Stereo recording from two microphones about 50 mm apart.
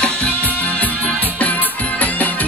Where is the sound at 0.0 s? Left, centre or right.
Left.